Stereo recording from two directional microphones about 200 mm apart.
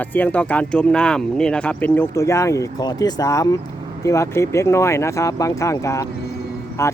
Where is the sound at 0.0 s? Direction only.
10° left (ahead or behind).